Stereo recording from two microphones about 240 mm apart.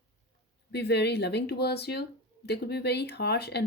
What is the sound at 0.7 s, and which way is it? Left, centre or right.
A woman's voice, left.